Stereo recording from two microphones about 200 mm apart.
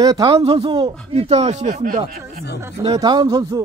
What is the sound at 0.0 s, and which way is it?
Speech, 20° right (ahead or behind).